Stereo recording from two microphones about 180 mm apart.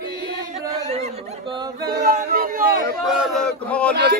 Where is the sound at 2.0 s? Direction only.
55° right (ahead or behind).